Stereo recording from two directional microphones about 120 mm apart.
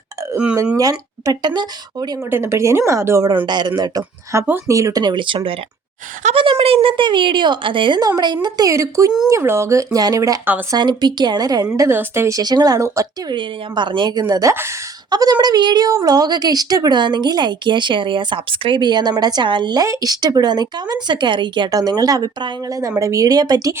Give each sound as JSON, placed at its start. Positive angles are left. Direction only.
{"t": 0.8, "sound": "speech", "side_deg": -30}
{"t": 2.1, "sound": "a woman's voice", "side_deg": -20}
{"t": 3.4, "sound": "a woman's voice", "side_deg": -40}
{"t": 10.4, "sound": "speech", "side_deg": -15}
{"t": 10.7, "sound": "speech", "side_deg": -35}
{"t": 11.9, "sound": "a woman's voice", "side_deg": -20}
{"t": 12.4, "sound": "speech", "side_deg": -35}
{"t": 13.3, "sound": "speech", "side_deg": -40}
{"t": 14.5, "sound": "a woman's voice", "side_deg": -20}
{"t": 15.1, "sound": "speech", "side_deg": -35}